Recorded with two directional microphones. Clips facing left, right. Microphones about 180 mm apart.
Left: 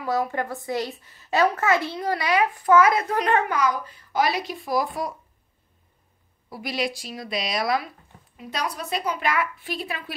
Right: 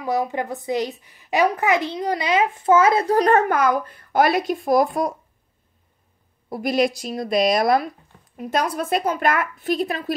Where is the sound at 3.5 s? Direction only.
55° right (ahead or behind).